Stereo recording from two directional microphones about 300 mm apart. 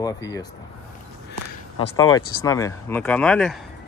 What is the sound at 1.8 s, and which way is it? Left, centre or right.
Speech, centre.